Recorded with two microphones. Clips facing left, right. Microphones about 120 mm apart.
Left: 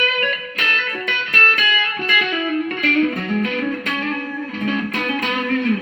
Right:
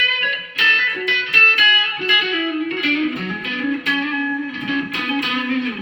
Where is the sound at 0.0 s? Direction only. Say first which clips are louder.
Left 5 dB; 45° left (ahead or behind).